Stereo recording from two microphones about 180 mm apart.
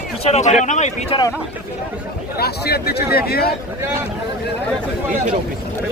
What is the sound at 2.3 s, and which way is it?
Speech, 60° left (ahead or behind).